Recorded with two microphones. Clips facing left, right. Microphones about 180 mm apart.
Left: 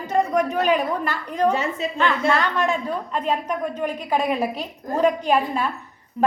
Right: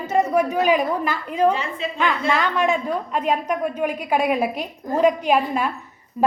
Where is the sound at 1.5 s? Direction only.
45° left (ahead or behind).